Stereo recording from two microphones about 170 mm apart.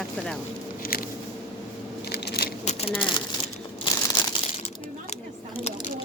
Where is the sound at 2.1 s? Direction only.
70° left (ahead or behind).